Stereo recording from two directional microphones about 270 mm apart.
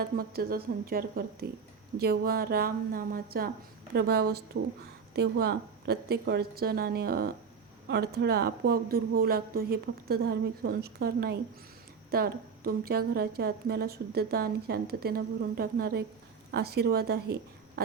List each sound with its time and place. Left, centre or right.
0.0 s a woman's voice: right